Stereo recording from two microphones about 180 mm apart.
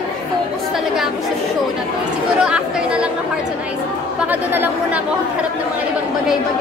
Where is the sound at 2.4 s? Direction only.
5° right (ahead or behind).